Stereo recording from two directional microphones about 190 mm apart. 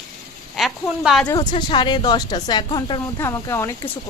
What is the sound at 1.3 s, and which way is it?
A woman's voice, 20° left (ahead or behind).